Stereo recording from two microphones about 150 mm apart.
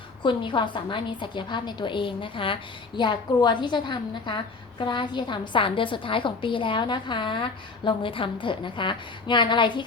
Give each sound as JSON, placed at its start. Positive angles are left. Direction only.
{"t": 0.2, "sound": "a woman's voice", "side_deg": 35}